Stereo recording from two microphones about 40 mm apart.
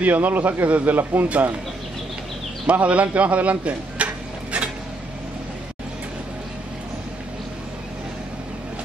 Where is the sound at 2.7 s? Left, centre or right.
Right.